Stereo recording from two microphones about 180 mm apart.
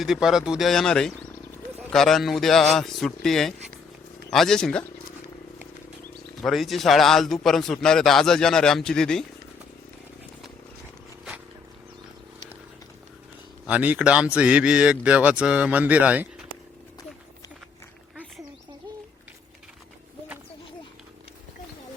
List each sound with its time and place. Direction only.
0.0 s a man's voice: centre (ahead or behind)
6.4 s a man's voice: centre (ahead or behind)
13.7 s speech: 10° right (ahead or behind)